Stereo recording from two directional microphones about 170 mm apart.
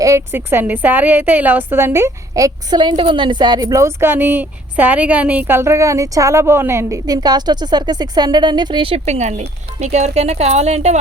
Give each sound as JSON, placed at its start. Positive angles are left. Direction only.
{"t": 0.0, "sound": "a woman's voice", "side_deg": -15}